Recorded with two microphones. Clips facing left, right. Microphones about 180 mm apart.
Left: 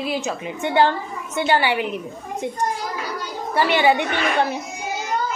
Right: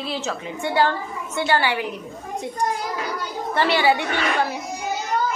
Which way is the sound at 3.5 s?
15° left (ahead or behind).